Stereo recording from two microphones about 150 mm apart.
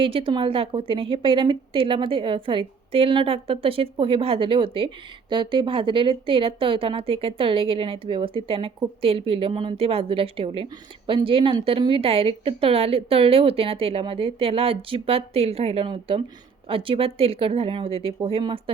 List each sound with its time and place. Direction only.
0.0 s a woman's voice: 35° right (ahead or behind)